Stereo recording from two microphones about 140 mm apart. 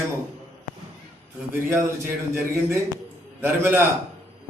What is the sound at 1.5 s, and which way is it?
Speech, 15° right (ahead or behind).